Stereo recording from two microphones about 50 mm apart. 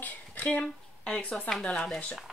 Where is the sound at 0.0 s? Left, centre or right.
Left.